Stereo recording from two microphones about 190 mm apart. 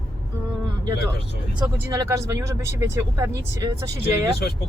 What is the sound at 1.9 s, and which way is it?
Speech, 15° right (ahead or behind).